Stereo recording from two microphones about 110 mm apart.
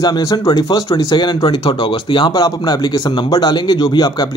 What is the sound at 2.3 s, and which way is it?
Speech, 35° left (ahead or behind).